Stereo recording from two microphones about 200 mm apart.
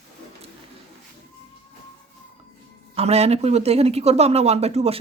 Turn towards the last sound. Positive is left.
turn(degrees=-30)  # may be behind; listen again after turning